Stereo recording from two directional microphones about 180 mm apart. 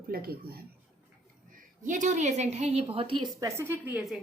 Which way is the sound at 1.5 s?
45° right (ahead or behind).